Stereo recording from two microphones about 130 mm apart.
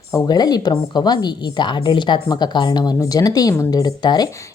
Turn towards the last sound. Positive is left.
turn(degrees=35)  # may be behind; listen again after turning